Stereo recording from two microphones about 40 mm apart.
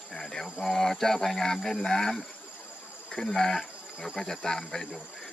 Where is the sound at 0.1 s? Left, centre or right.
Centre.